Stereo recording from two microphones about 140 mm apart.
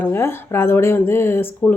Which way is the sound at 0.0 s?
15° left (ahead or behind).